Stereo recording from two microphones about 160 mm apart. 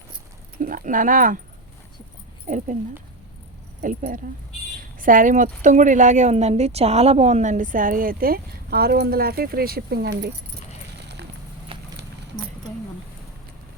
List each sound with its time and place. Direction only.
0.6 s speech: 60° right (ahead or behind)
3.8 s speech: 60° right (ahead or behind); by 10.3 s 85° right
11.7 s horse: 35° right (ahead or behind)